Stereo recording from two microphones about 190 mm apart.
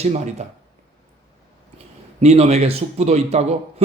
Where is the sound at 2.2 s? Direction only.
35° right (ahead or behind).